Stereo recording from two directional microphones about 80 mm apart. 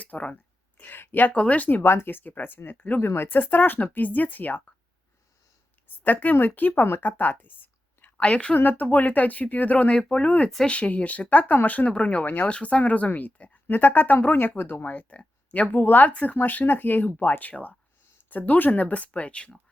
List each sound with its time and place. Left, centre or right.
0.0 s speech: centre
1.8 s speech: left
6.0 s speech: left